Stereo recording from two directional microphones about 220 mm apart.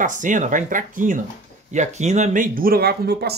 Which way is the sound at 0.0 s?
35° right (ahead or behind).